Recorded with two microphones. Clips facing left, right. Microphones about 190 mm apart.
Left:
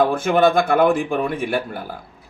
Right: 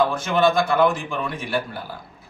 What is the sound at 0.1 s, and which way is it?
A man's voice, 55° left (ahead or behind).